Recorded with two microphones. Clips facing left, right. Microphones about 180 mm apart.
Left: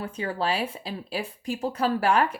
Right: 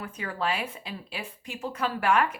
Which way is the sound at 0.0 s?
30° left (ahead or behind).